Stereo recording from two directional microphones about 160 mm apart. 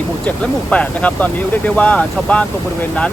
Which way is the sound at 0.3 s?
10° left (ahead or behind).